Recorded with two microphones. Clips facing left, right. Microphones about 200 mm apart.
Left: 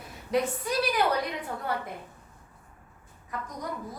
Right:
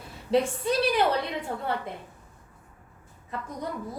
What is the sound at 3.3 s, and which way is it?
Speech, 25° right (ahead or behind).